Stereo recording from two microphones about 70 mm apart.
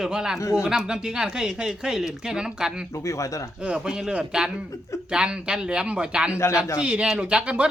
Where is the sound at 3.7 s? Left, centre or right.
Centre.